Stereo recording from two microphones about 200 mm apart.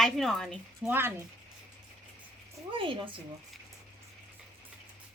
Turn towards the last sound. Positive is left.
turn(degrees=-25)  # may be behind; listen again after turning